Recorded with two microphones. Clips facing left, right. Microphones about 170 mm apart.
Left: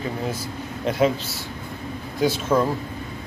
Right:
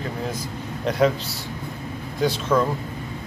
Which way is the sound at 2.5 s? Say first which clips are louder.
Even; 25° left (ahead or behind).